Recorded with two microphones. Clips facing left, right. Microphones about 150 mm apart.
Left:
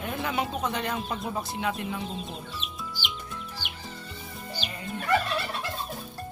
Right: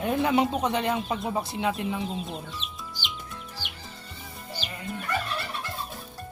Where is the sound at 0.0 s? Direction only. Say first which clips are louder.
Right 7 dB; 25° right (ahead or behind).